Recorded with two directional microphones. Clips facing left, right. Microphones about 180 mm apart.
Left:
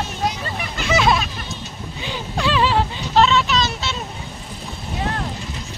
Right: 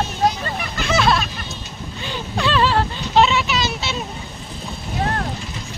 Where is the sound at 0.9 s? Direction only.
15° left (ahead or behind).